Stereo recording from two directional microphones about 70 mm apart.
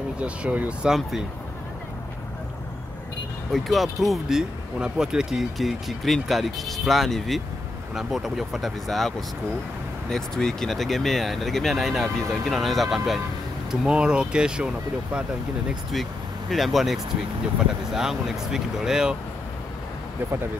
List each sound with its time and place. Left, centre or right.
0.2 s speech: centre
0.8 s speech: centre
3.5 s speech: centre
13.7 s speech: centre
15.9 s speech: centre